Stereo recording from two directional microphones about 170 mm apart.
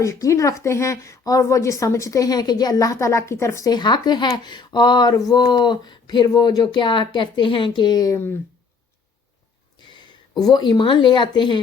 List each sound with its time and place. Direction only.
0.0 s a woman's voice: 20° left (ahead or behind)
9.9 s speech: 25° left (ahead or behind)